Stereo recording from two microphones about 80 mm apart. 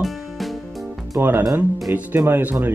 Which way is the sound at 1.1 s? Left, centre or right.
Right.